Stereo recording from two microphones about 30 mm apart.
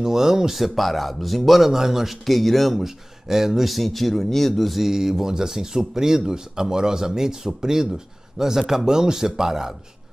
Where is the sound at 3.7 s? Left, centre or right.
Centre.